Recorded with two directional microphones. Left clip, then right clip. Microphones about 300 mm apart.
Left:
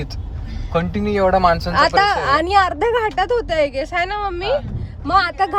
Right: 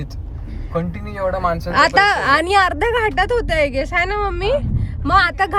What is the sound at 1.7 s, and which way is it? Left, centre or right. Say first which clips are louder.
Speech: right 6 dB; right.